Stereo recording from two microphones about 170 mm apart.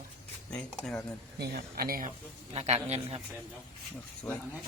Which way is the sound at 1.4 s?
60° right (ahead or behind).